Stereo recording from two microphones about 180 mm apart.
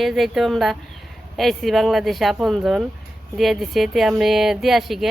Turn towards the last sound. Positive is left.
turn(degrees=0)  # may be behind; listen again after turning